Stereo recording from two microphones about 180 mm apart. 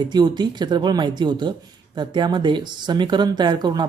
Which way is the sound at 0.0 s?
25° right (ahead or behind).